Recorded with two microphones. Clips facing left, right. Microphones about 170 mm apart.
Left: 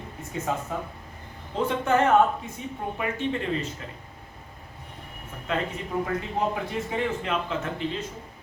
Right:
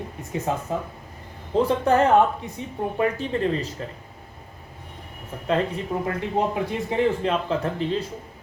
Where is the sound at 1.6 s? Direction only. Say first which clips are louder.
Right 4 dB; 35° right (ahead or behind).